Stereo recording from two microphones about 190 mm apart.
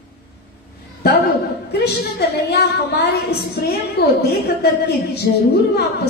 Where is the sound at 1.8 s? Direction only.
60° left (ahead or behind).